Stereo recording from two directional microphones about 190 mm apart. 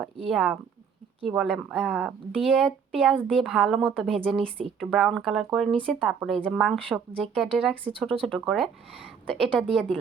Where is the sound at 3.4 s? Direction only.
Centre (ahead or behind).